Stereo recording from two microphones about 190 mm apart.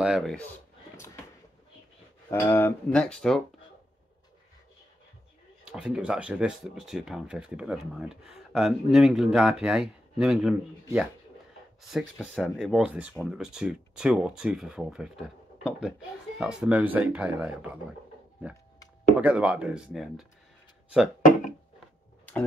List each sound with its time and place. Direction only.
0.0 s speech: centre (ahead or behind)
2.2 s speech: 10° left (ahead or behind)
5.7 s speech: 5° right (ahead or behind)
19.1 s speech: 5° right (ahead or behind)
21.2 s a sound: 45° left (ahead or behind)